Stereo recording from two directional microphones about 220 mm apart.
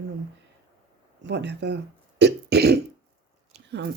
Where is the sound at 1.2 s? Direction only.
50° right (ahead or behind).